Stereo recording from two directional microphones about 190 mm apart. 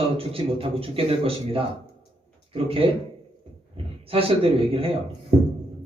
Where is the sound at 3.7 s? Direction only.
30° right (ahead or behind).